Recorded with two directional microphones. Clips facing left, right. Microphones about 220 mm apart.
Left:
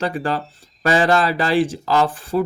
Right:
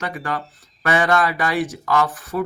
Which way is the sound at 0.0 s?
30° left (ahead or behind).